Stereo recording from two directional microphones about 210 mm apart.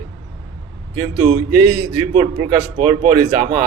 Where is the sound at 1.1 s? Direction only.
20° right (ahead or behind).